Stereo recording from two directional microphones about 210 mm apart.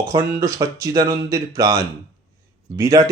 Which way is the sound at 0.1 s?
15° right (ahead or behind).